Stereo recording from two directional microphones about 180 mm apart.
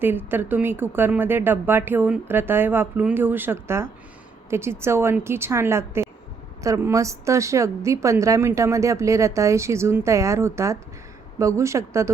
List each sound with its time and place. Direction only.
0.0 s a woman's voice: 10° right (ahead or behind)